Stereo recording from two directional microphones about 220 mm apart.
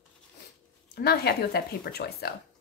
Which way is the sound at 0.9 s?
45° left (ahead or behind).